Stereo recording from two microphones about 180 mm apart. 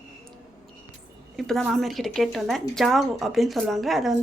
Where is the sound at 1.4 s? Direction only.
Centre (ahead or behind).